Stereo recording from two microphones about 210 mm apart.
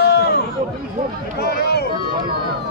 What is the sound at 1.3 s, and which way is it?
Speech, 50° left (ahead or behind).